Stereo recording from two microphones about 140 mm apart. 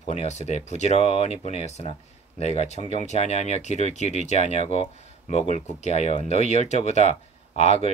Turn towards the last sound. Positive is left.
turn(degrees=55)  # may be behind; listen again after turning